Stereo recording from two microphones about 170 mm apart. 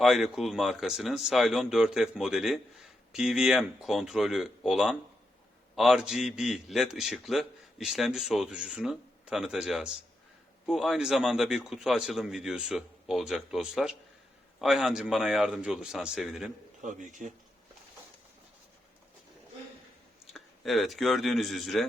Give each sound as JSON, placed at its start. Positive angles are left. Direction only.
{"t": 0.0, "sound": "a man's voice", "side_deg": 0}
{"t": 16.8, "sound": "speech", "side_deg": -50}
{"t": 20.3, "sound": "speech", "side_deg": 0}